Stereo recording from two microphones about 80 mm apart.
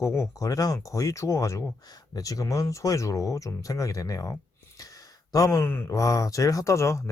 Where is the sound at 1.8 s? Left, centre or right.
Left.